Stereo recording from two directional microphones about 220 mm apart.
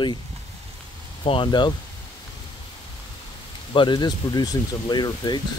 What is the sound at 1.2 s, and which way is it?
Speech, 20° left (ahead or behind).